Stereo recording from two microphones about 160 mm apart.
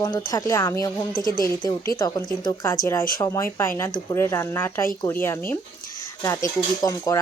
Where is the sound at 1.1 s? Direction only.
60° left (ahead or behind).